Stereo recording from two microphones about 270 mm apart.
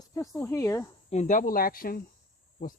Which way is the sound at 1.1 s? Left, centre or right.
Left.